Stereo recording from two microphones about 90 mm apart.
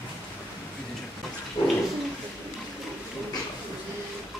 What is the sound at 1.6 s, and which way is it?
Bird, 55° left (ahead or behind).